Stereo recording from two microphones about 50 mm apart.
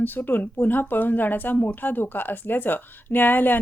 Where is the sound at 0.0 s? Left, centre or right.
Left.